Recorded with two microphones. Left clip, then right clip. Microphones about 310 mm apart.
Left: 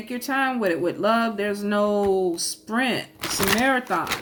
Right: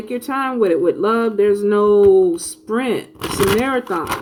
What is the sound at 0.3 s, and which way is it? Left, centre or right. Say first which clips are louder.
Speech: right 5 dB; left.